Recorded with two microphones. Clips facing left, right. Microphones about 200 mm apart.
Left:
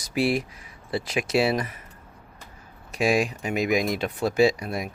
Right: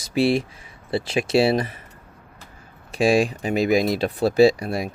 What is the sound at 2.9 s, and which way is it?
Speech, 30° right (ahead or behind).